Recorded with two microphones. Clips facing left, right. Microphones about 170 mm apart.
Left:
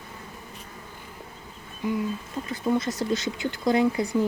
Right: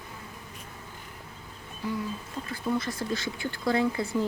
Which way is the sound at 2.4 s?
20° left (ahead or behind).